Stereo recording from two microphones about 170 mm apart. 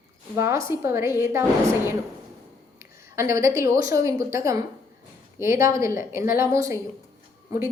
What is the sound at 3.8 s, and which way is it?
A woman's voice, 20° right (ahead or behind).